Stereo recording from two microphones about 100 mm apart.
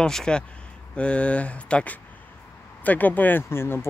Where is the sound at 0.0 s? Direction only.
5° left (ahead or behind).